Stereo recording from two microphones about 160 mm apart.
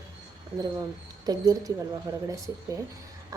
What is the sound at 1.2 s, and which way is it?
Speech, 25° right (ahead or behind).